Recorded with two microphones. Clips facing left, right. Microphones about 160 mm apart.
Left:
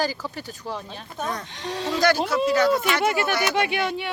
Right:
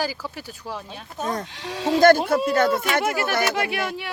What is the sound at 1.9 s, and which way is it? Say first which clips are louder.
Speech: right 6 dB; 50° right (ahead or behind).